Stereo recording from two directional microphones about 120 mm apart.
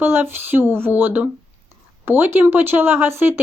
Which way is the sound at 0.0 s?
20° right (ahead or behind).